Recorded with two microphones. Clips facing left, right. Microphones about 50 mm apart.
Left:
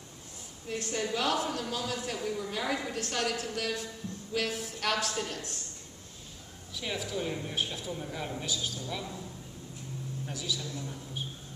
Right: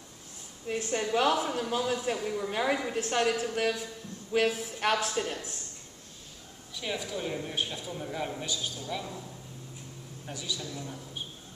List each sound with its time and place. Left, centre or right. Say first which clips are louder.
0.7 s a woman's voice: right 3 dB; centre
6.7 s a man's voice: right 1 dB; centre
10.2 s a woman's voice: right 1 dB; centre